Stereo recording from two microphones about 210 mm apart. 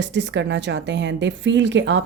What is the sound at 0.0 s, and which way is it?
A woman's voice, 60° right (ahead or behind).